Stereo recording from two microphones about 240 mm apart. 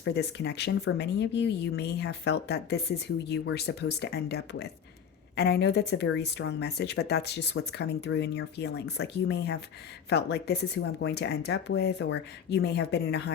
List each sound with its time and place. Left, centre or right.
0.0 s speech: left